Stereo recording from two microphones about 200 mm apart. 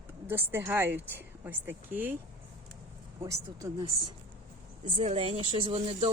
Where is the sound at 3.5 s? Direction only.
20° right (ahead or behind).